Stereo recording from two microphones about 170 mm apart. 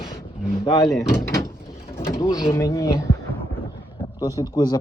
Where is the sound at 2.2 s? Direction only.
20° left (ahead or behind).